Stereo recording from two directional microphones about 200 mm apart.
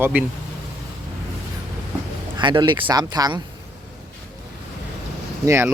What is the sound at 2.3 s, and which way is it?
Speech, 25° right (ahead or behind).